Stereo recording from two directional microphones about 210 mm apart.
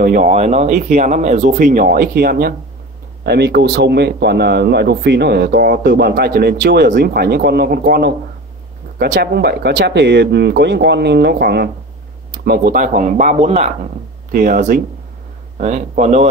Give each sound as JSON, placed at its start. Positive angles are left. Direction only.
{"t": 0.0, "sound": "speech", "side_deg": -40}